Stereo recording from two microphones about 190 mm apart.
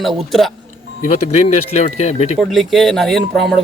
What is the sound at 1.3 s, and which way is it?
Speech, 35° left (ahead or behind).